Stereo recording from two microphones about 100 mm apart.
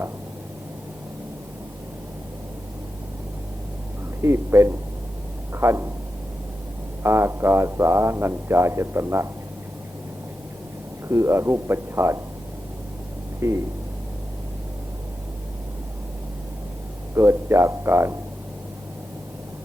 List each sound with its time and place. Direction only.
4.2 s speech: 25° right (ahead or behind)
5.5 s a sound: 25° right (ahead or behind)
7.0 s speech: 25° right (ahead or behind)
11.1 s speech: 30° right (ahead or behind)
13.4 s speech: 25° right (ahead or behind)
17.2 s speech: 30° right (ahead or behind)